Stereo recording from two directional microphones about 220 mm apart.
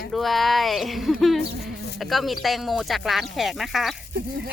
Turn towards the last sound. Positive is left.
turn(degrees=0)  # may be behind; listen again after turning